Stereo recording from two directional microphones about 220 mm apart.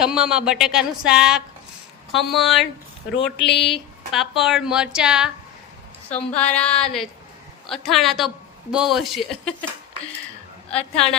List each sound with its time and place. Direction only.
0.0 s speech: 5° right (ahead or behind)
3.2 s speech: 50° left (ahead or behind)
4.1 s speech: centre (ahead or behind)
10.7 s speech: 5° left (ahead or behind)